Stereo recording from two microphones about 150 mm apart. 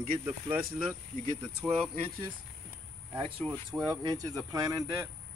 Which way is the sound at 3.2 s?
35° right (ahead or behind).